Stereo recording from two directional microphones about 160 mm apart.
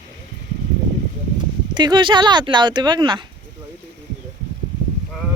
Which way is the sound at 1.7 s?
30° right (ahead or behind).